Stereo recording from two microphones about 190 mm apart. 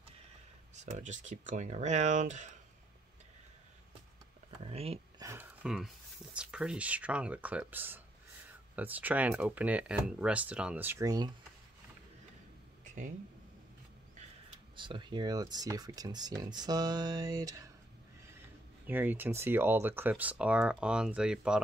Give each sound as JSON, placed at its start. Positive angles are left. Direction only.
{"t": 0.7, "sound": "speech", "side_deg": -40}
{"t": 4.6, "sound": "speech", "side_deg": -30}
{"t": 5.2, "sound": "speech", "side_deg": -10}
{"t": 14.8, "sound": "speech", "side_deg": -25}
{"t": 18.9, "sound": "speech", "side_deg": -10}